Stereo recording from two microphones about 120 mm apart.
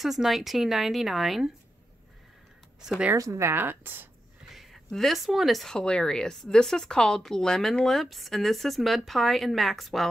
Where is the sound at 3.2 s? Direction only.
25° right (ahead or behind).